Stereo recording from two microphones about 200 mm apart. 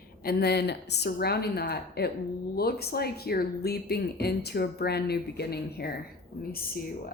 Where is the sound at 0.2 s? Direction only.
50° left (ahead or behind).